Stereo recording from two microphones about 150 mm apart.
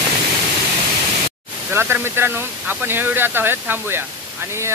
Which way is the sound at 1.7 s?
15° right (ahead or behind).